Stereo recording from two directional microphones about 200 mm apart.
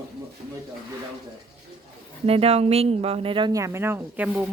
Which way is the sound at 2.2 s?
30° right (ahead or behind).